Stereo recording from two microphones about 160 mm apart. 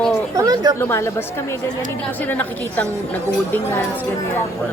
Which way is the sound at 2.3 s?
10° left (ahead or behind).